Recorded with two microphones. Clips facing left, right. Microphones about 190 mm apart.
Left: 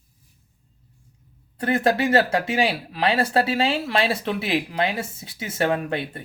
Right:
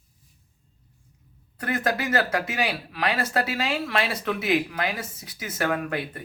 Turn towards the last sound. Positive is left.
turn(degrees=30)  # may be behind; listen again after turning